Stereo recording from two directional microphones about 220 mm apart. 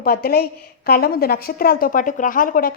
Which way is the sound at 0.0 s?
45° left (ahead or behind).